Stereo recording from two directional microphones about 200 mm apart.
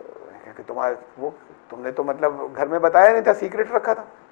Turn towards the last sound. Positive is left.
turn(degrees=25)  # may be behind; listen again after turning